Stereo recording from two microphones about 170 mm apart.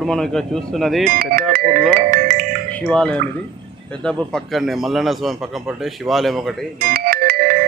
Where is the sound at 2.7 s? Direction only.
5° left (ahead or behind).